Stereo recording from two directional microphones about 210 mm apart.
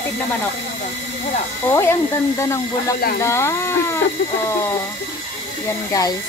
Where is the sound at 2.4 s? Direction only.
15° left (ahead or behind).